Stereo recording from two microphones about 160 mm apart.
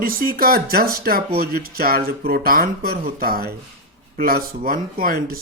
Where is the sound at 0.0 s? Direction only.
65° right (ahead or behind).